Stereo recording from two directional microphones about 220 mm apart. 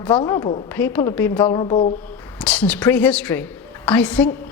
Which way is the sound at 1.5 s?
25° left (ahead or behind).